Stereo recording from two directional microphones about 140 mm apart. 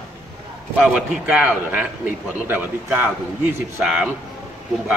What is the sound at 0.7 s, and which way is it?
A man's voice, 5° right (ahead or behind).